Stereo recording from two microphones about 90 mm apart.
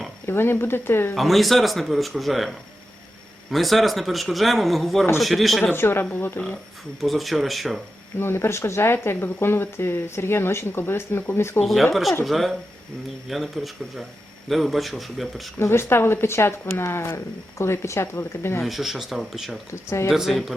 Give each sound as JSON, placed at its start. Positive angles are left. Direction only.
{"t": 0.3, "sound": "speech", "side_deg": 25}
{"t": 1.1, "sound": "speech", "side_deg": 0}
{"t": 3.5, "sound": "speech", "side_deg": 0}
{"t": 5.7, "sound": "speech", "side_deg": 25}
{"t": 7.0, "sound": "speech", "side_deg": 0}
{"t": 8.2, "sound": "speech", "side_deg": 25}
{"t": 11.6, "sound": "speech", "side_deg": 0}
{"t": 15.5, "sound": "speech", "side_deg": 30}
{"t": 18.6, "sound": "speech", "side_deg": 0}
{"t": 19.7, "sound": "speech", "side_deg": 30}
{"t": 20.1, "sound": "speech", "side_deg": 0}